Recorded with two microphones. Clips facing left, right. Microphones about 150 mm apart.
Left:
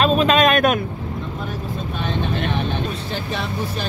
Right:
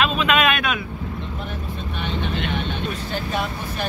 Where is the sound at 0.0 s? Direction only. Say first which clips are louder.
Left 4 dB; 40° left (ahead or behind).